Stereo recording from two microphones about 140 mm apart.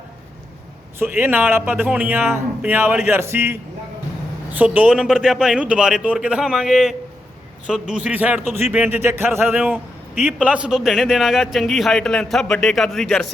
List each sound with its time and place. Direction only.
0.9 s a man's voice: 15° right (ahead or behind); by 13.3 s 5° left (ahead or behind)